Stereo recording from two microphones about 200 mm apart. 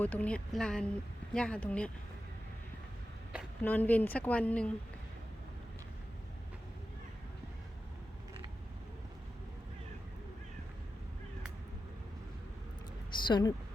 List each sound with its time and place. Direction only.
0.0 s speech: 10° left (ahead or behind)
3.6 s speech: 10° left (ahead or behind)
13.2 s speech: 20° left (ahead or behind)